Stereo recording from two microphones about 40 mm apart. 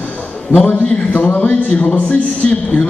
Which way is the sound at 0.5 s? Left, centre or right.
Left.